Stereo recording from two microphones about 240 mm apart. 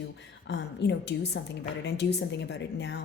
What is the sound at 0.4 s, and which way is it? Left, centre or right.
A woman's voice, left.